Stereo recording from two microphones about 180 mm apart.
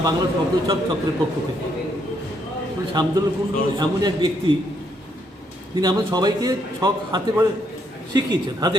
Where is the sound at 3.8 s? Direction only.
25° right (ahead or behind).